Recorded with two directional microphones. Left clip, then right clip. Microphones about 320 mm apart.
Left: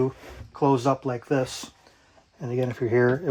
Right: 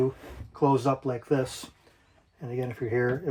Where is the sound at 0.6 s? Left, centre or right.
Centre.